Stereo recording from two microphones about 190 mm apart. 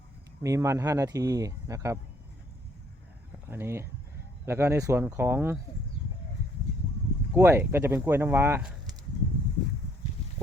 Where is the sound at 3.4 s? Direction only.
15° right (ahead or behind).